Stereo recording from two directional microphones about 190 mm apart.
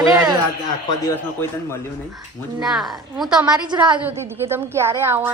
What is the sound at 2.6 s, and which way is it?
A woman's voice, centre (ahead or behind).